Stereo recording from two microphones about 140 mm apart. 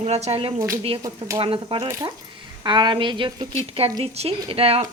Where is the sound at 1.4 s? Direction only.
40° right (ahead or behind).